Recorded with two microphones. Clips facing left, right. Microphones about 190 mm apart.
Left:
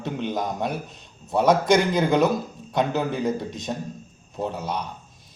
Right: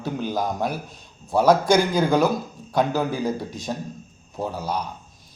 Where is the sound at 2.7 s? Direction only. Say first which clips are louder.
Right 2 dB; 5° right (ahead or behind).